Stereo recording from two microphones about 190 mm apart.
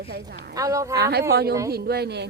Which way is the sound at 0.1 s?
55° right (ahead or behind).